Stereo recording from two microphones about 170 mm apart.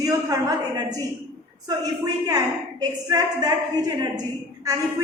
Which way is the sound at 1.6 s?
20° right (ahead or behind).